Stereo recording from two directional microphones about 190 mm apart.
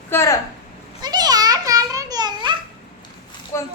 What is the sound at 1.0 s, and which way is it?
Babbling, 20° right (ahead or behind).